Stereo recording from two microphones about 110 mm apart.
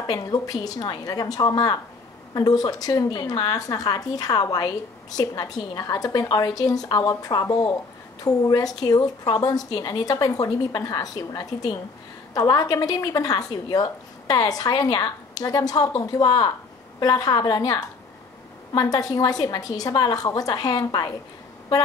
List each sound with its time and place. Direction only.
0.0 s a woman's voice: 35° left (ahead or behind)